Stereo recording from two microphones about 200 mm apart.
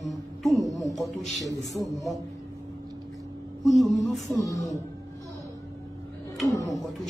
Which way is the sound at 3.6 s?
Centre (ahead or behind).